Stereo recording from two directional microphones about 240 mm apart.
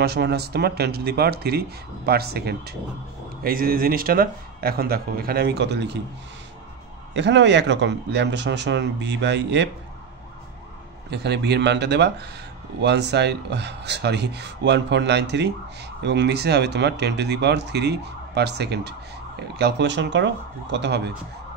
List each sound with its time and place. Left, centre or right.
0.0 s speech: right
7.2 s speech: right
11.1 s speech: right